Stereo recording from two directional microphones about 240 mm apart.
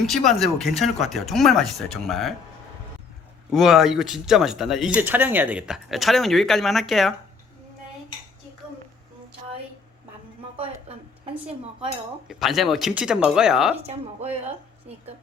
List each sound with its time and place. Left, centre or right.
0.0 s speech: centre
3.5 s speech: centre
12.3 s speech: centre
13.8 s a woman's voice: right